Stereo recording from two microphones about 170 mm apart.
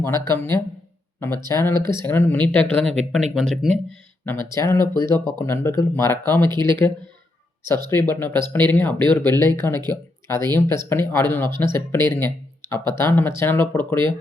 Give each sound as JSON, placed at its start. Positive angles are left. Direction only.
{"t": 0.0, "sound": "speech", "side_deg": 15}
{"t": 4.3, "sound": "speech", "side_deg": 15}